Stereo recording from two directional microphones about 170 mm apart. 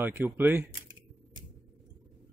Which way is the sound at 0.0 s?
10° right (ahead or behind).